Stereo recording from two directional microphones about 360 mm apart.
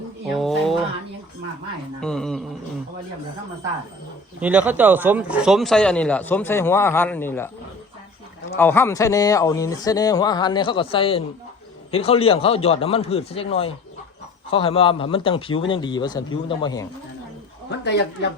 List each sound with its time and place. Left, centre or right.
0.3 s a sound: centre
2.0 s speech: centre
4.4 s a man's voice: centre
17.7 s a woman's voice: left